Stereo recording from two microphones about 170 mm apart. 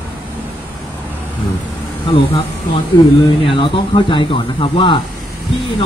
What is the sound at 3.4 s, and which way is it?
Speech, 30° left (ahead or behind).